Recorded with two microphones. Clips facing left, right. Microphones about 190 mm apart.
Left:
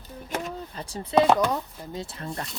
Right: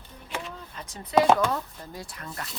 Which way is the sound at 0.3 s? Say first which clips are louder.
Left 4 dB; 40° left (ahead or behind).